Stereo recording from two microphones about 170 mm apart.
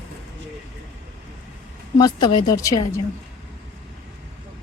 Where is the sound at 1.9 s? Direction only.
25° left (ahead or behind).